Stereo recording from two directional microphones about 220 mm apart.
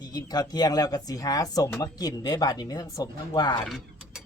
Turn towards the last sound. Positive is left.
turn(degrees=0)  # may be behind; listen again after turning